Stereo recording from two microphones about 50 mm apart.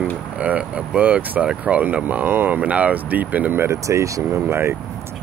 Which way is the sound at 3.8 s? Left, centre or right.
Right.